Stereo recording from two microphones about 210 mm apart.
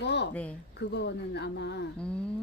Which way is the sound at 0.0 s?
55° left (ahead or behind).